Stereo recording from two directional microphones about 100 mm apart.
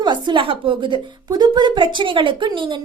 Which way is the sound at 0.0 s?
50° right (ahead or behind).